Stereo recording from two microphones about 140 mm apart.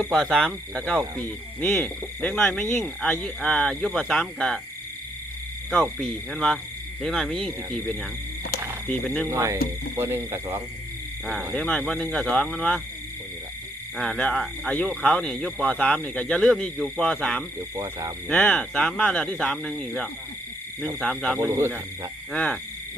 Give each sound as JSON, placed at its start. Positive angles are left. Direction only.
{"t": 0.0, "sound": "speech", "side_deg": 0}
{"t": 5.7, "sound": "speech", "side_deg": 0}
{"t": 9.2, "sound": "speech", "side_deg": -20}
{"t": 11.5, "sound": "speech", "side_deg": 5}
{"t": 13.9, "sound": "speech", "side_deg": 5}
{"t": 21.3, "sound": "speech", "side_deg": -20}
{"t": 22.3, "sound": "hoot", "side_deg": 10}